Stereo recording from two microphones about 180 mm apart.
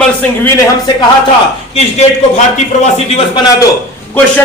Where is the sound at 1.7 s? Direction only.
35° left (ahead or behind).